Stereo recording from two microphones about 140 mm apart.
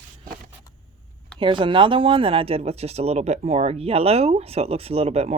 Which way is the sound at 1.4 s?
35° right (ahead or behind).